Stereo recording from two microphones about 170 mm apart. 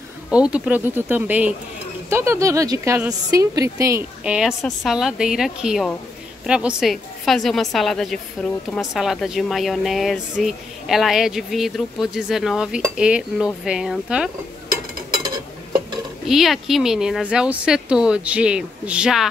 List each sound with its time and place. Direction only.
0.3 s a woman's voice: 5° right (ahead or behind)
4.2 s a woman's voice: 5° right (ahead or behind)
16.3 s a woman's voice: centre (ahead or behind)